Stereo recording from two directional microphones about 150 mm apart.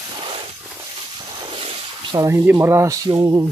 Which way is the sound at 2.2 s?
20° right (ahead or behind).